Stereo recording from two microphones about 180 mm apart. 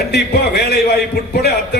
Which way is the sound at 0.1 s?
65° left (ahead or behind).